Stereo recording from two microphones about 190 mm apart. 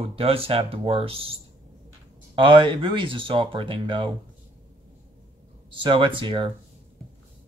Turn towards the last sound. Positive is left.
turn(degrees=-25)  # may be behind; listen again after turning